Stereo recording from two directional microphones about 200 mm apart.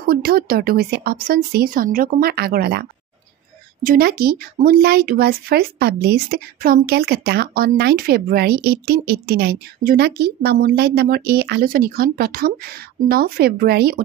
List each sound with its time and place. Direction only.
0.0 s speech: 50° right (ahead or behind)